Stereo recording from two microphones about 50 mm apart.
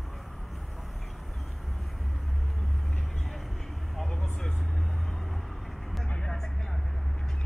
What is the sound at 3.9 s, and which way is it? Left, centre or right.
Vehicle, centre.